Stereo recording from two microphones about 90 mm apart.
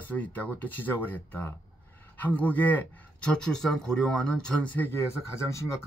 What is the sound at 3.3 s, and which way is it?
Speech, 5° left (ahead or behind).